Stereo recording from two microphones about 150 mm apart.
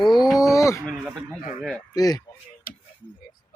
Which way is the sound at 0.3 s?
Centre (ahead or behind).